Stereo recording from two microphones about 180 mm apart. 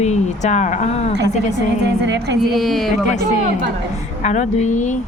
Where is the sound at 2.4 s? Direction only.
Centre (ahead or behind).